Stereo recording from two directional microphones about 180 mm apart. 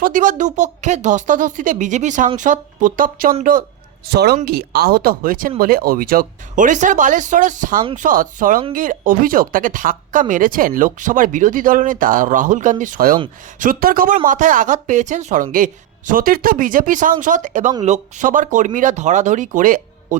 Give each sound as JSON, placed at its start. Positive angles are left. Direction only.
{"t": 0.0, "sound": "speech", "side_deg": -45}
{"t": 4.0, "sound": "speech", "side_deg": -65}